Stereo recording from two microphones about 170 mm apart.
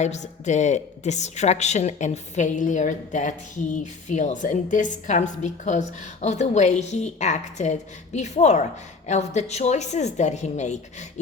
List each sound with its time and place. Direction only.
0.0 s a woman's voice: 45° left (ahead or behind)